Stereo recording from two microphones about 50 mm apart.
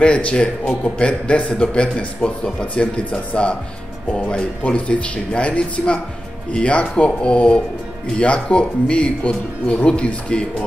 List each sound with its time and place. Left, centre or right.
0.0 s a man's voice: left